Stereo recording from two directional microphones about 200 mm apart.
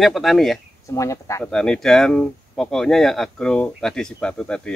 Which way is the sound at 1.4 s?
5° left (ahead or behind).